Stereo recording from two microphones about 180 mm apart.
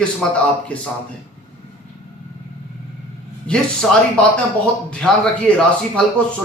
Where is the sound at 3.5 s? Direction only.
5° left (ahead or behind).